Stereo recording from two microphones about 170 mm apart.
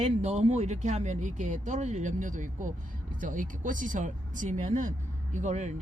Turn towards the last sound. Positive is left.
turn(degrees=-45)  # may be behind; listen again after turning